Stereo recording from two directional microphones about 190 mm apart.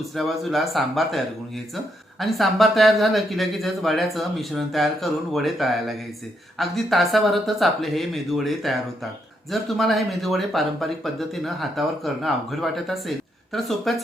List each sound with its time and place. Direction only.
0.2 s speech: centre (ahead or behind)
2.2 s speech: centre (ahead or behind)